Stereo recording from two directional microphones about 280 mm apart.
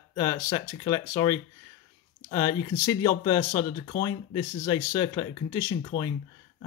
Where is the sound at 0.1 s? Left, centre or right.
Centre.